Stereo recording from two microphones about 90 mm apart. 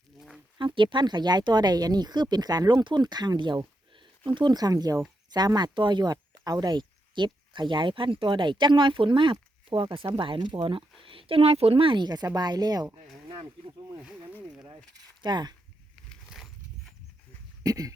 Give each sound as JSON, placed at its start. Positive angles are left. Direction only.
{"t": 0.6, "sound": "speech", "side_deg": -65}
{"t": 12.0, "sound": "speech", "side_deg": -45}
{"t": 14.0, "sound": "speech", "side_deg": -10}
{"t": 14.9, "sound": "speech", "side_deg": -50}
{"t": 16.3, "sound": "a sound", "side_deg": -5}
{"t": 17.6, "sound": "a sound", "side_deg": -40}